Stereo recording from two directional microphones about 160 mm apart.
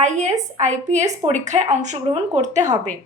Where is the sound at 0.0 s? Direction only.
50° right (ahead or behind).